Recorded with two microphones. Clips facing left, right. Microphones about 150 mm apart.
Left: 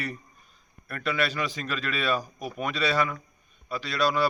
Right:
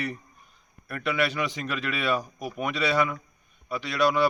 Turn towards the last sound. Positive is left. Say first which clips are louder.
# right 2 dB
turn(degrees=-15)  # may be behind; listen again after turning